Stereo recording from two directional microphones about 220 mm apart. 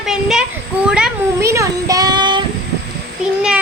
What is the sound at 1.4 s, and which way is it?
Child singing, 15° right (ahead or behind).